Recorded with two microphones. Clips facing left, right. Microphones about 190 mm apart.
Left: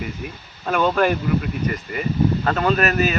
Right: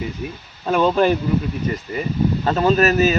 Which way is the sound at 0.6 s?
30° right (ahead or behind).